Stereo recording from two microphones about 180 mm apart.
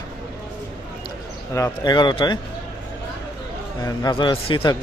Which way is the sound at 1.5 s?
20° left (ahead or behind).